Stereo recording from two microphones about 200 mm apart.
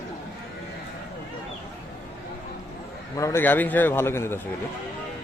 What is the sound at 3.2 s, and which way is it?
A man's voice, 15° left (ahead or behind).